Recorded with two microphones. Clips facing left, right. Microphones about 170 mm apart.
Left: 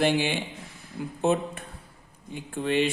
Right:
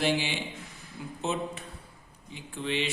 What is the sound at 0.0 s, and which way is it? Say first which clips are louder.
Speech: left 4 dB; 55° left (ahead or behind).